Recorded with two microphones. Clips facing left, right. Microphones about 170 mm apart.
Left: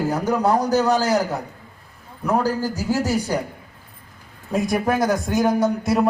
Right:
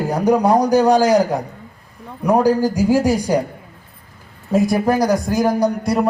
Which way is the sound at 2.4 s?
15° right (ahead or behind).